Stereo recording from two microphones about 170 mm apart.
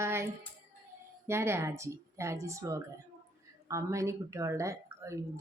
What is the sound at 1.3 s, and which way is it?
Speech, 15° right (ahead or behind).